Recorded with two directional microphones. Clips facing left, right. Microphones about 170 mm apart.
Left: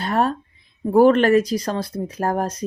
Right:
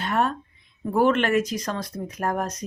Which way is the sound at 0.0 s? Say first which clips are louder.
Left 4 dB; 35° left (ahead or behind).